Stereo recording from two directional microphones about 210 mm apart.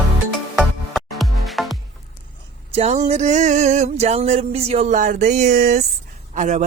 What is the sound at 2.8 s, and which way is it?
Male singing, 30° right (ahead or behind).